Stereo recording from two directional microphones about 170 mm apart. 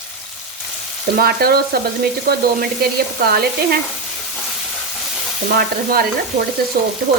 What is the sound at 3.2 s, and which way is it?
Stir, 65° right (ahead or behind).